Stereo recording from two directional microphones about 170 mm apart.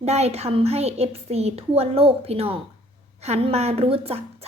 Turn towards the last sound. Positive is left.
turn(degrees=-35)  # may be behind; listen again after turning